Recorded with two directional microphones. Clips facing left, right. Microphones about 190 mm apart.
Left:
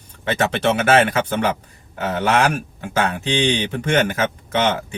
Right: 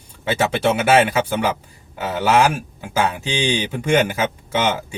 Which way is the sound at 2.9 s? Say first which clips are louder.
Left 1 dB; 10° right (ahead or behind).